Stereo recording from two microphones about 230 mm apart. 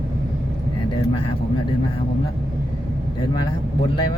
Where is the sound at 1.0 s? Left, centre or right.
Left.